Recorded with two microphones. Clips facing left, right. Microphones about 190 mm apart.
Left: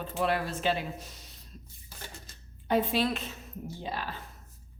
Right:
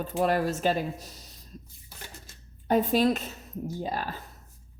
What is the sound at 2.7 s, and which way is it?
A woman's voice, 45° right (ahead or behind).